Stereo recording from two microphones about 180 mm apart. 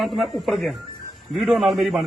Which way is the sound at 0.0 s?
Centre (ahead or behind).